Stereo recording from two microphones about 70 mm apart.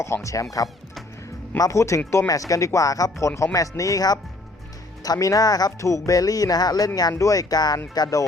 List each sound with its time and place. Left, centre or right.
0.0 s speech: left
1.5 s speech: left
5.8 s speech: left
7.1 s speech: left